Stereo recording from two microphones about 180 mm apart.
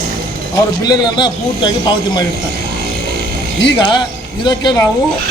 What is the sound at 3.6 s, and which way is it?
A man's voice, 25° left (ahead or behind).